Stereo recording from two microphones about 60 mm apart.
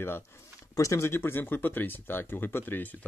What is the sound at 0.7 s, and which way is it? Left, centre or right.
Speech, left.